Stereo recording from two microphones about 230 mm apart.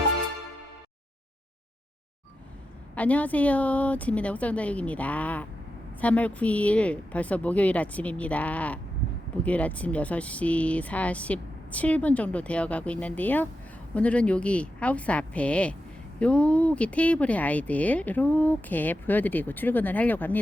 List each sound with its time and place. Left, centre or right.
2.9 s speech: centre